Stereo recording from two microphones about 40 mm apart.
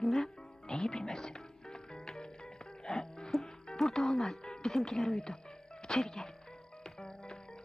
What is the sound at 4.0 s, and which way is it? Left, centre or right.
Speech, centre.